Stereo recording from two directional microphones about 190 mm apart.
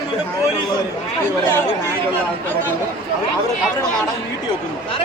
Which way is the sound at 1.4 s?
10° left (ahead or behind).